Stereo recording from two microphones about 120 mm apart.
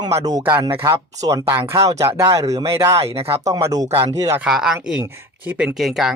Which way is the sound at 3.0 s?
55° right (ahead or behind).